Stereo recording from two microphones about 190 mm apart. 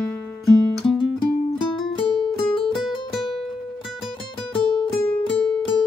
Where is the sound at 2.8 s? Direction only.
Centre (ahead or behind).